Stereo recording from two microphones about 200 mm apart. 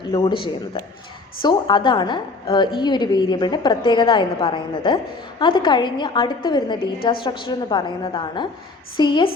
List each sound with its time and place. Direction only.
0.0 s a woman's voice: 20° left (ahead or behind)